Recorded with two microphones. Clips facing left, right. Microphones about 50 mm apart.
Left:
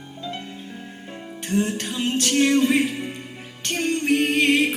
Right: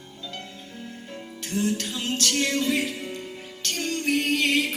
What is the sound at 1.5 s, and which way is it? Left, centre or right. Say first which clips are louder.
Music: left 3 dB; left.